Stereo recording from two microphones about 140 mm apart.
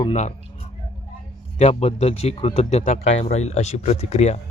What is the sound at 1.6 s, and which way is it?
Speech, 50° left (ahead or behind).